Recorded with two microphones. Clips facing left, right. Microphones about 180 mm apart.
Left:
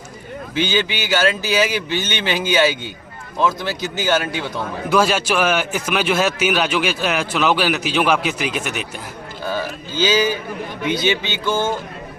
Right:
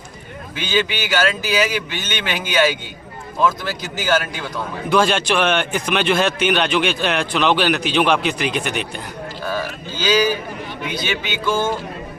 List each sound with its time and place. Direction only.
0.5 s speech: 25° left (ahead or behind)
4.9 s speech: 5° left (ahead or behind)
10.0 s speech: 20° left (ahead or behind)